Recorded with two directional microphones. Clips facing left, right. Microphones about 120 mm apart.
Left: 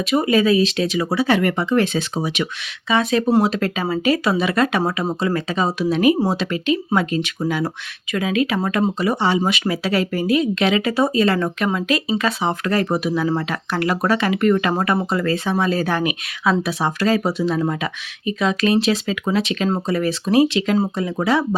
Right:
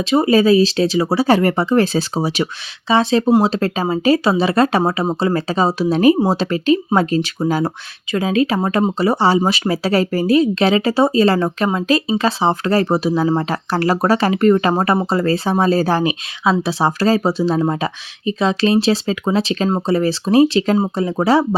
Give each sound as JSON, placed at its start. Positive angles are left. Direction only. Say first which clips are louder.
{"t": 0.0, "sound": "speech", "louder": "right 4 dB", "side_deg": -30}